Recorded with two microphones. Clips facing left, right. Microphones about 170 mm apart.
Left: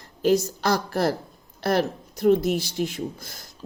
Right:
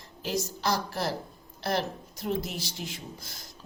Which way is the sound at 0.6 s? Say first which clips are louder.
Left 7 dB; 55° left (ahead or behind).